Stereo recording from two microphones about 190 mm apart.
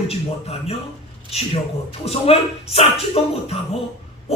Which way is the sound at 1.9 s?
30° left (ahead or behind).